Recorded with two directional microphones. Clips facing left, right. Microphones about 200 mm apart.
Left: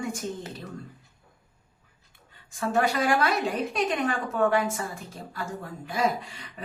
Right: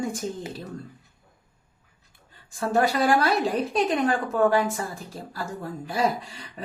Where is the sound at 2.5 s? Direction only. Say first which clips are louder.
Right 2 dB; 35° right (ahead or behind).